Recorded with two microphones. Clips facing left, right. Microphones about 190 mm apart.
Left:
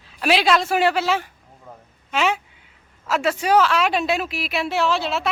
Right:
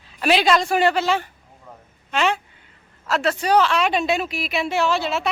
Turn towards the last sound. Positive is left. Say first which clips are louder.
# even
turn(degrees=0)  # may be behind; listen again after turning